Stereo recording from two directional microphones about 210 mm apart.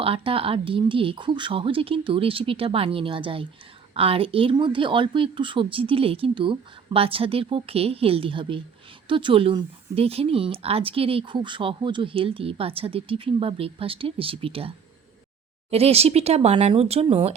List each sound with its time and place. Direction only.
0.0 s speech: 25° right (ahead or behind)
15.7 s speech: 30° right (ahead or behind)